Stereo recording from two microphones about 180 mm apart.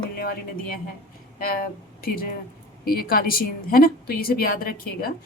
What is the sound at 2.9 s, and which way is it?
A woman's voice, 55° left (ahead or behind).